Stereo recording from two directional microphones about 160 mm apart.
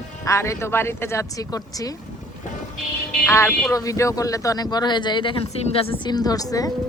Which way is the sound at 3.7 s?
20° left (ahead or behind).